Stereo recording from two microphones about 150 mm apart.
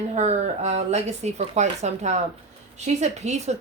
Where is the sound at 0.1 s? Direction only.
45° right (ahead or behind).